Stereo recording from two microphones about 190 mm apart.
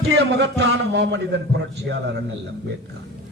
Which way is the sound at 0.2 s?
65° right (ahead or behind).